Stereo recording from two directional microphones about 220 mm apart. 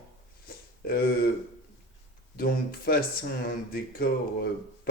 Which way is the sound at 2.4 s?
45° left (ahead or behind).